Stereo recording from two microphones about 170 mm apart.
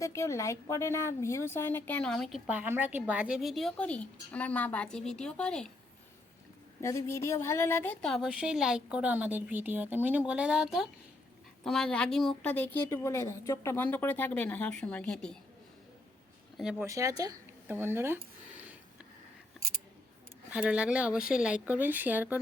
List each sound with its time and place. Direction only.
0.0 s speech: 20° left (ahead or behind)
2.5 s speech: 10° right (ahead or behind)
6.8 s speech: 15° left (ahead or behind)
16.6 s speech: 5° right (ahead or behind)
16.8 s speech: 20° right (ahead or behind)
18.6 s sniff: 10° right (ahead or behind)
19.6 s scissors: centre (ahead or behind)
20.5 s speech: 5° right (ahead or behind)